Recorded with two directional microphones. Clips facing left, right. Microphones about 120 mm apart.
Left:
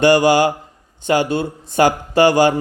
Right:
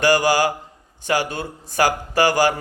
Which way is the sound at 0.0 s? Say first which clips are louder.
Left 5 dB; 25° left (ahead or behind).